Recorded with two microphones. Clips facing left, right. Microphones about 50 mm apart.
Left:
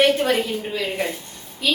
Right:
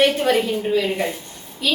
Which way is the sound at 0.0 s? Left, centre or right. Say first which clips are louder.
Right 1 dB; centre.